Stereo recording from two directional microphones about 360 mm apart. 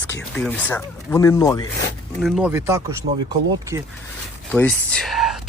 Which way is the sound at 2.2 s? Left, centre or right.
Centre.